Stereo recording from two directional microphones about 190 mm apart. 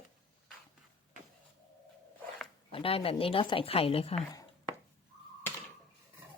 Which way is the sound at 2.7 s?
30° left (ahead or behind).